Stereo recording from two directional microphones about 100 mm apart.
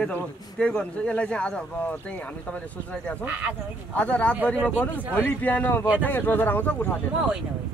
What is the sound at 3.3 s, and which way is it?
Speech, 15° right (ahead or behind).